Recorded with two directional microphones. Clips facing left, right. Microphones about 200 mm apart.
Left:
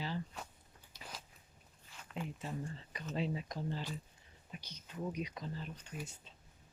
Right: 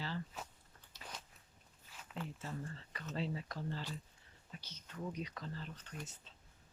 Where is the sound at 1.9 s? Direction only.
5° right (ahead or behind).